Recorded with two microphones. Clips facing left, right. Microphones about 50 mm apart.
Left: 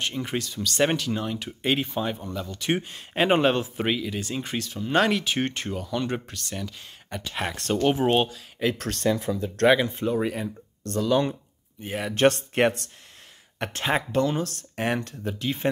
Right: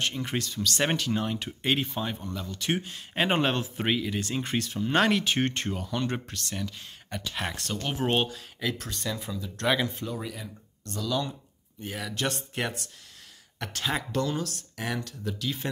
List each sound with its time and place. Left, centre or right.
0.0 s speech: centre
8.0 s speech: centre
8.7 s speech: left
9.7 s speech: centre
10.0 s speech: left
13.6 s speech: left
14.4 s speech: left